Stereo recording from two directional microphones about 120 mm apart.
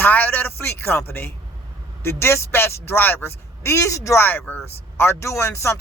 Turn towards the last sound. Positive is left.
turn(degrees=25)  # may be behind; listen again after turning